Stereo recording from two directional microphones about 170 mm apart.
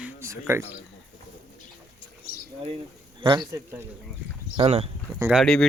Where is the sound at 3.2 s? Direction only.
30° right (ahead or behind).